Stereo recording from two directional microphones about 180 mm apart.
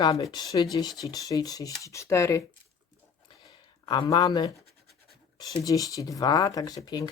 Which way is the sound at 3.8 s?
20° left (ahead or behind).